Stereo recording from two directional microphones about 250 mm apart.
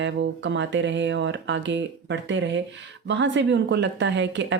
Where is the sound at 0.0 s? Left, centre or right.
Right.